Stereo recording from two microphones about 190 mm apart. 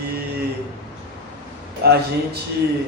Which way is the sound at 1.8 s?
55° right (ahead or behind).